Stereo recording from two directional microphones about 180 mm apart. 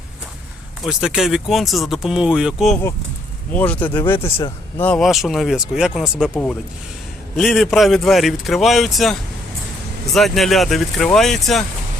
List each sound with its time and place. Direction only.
0.9 s speech: 5° right (ahead or behind)
3.5 s speech: 10° left (ahead or behind)
4.2 s speech: 30° left (ahead or behind)
4.8 s speech: 5° left (ahead or behind)
6.3 s speech: 10° left (ahead or behind)
10.2 s speech: centre (ahead or behind)